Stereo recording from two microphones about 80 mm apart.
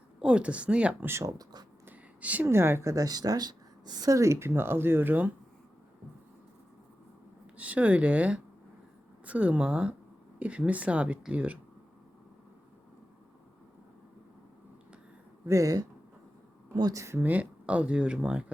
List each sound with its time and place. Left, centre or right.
0.2 s speech: centre
1.0 s speech: right
1.9 s a sound: right
2.5 s speech: right
2.9 s speech: right
7.5 s speech: centre
15.4 s speech: right
16.9 s speech: right
17.2 s speech: centre